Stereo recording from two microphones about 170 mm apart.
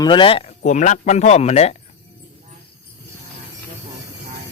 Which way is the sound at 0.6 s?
45° left (ahead or behind).